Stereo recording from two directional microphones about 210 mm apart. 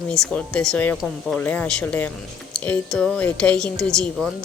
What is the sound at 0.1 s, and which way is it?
A woman's voice, 5° left (ahead or behind).